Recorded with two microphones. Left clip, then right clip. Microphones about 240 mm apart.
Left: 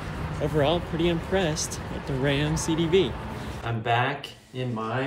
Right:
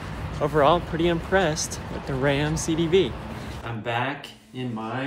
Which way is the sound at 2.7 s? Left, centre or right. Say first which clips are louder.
Right 1 dB; right.